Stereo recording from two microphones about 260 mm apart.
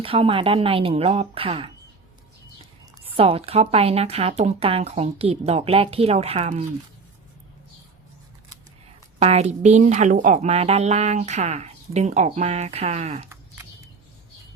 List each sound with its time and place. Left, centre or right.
0.0 s a woman's voice: right
3.0 s a woman's voice: right
9.1 s a woman's voice: right